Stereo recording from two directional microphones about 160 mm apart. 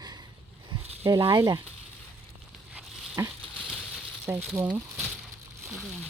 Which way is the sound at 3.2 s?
20° right (ahead or behind).